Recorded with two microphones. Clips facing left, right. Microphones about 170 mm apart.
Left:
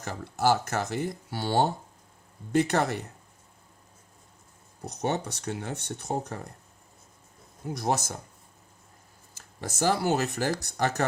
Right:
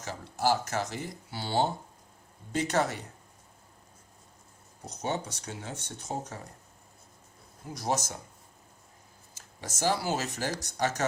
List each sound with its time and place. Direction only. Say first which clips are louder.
0.0 s speech: left 3 dB; 55° left (ahead or behind)
4.9 s speech: left 4 dB; 65° left (ahead or behind)
7.7 s speech: left 3 dB; 60° left (ahead or behind)
9.6 s speech: left 3 dB; 55° left (ahead or behind)